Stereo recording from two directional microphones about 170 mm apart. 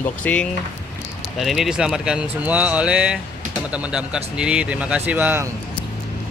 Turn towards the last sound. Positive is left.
turn(degrees=-10)  # may be behind; listen again after turning